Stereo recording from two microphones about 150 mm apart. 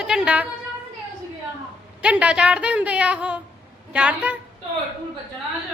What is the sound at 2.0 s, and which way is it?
A man's voice, 5° right (ahead or behind).